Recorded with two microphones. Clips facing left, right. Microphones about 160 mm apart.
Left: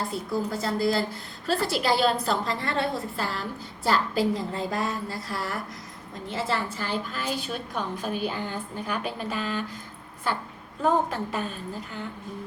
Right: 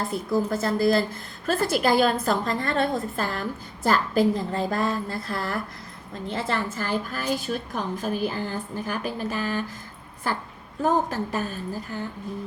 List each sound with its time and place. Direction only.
0.1 s a woman's voice: 50° right (ahead or behind)
11.1 s a woman's voice: 40° right (ahead or behind)